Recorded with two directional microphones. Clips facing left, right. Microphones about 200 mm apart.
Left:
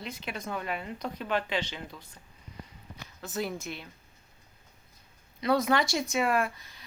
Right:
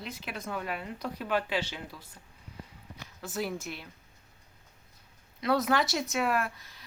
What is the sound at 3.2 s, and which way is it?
Speech, 5° right (ahead or behind).